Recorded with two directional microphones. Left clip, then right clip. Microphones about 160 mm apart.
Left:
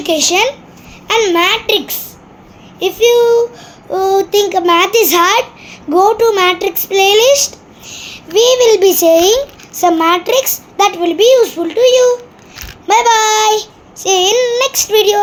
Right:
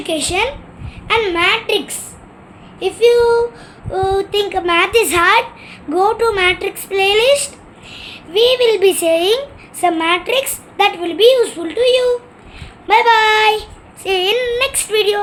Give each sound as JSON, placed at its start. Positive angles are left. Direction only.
{"t": 0.0, "sound": "a child's voice", "side_deg": 50}
{"t": 9.8, "sound": "child singing", "side_deg": 35}